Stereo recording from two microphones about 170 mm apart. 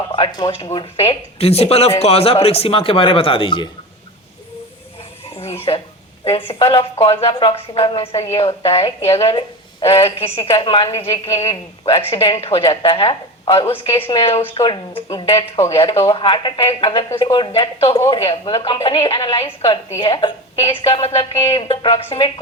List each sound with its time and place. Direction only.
0.1 s a woman's voice: 30° left (ahead or behind)
5.7 s a woman's voice: 30° left (ahead or behind)
8.4 s a woman's voice: 35° left (ahead or behind)